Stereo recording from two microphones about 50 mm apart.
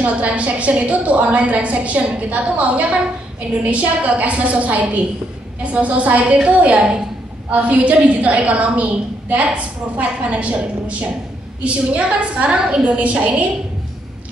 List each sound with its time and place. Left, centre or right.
0.0 s a woman's voice: right